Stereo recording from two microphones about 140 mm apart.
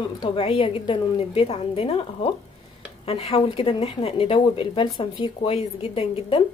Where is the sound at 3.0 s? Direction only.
45° left (ahead or behind).